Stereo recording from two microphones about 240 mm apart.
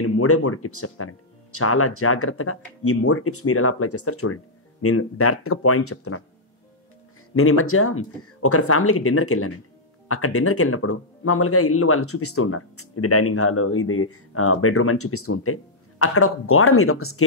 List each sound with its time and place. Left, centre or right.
0.0 s speech: left
7.3 s speech: left